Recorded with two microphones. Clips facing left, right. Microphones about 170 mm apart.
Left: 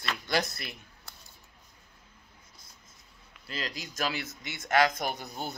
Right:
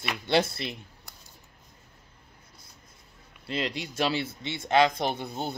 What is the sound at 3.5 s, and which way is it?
Speech, 30° right (ahead or behind).